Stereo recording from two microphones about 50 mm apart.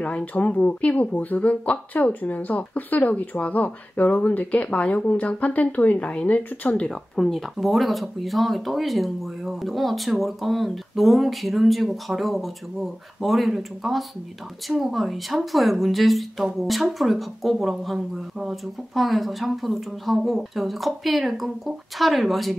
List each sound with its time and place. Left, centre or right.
0.0 s speech: left
6.9 s speech: centre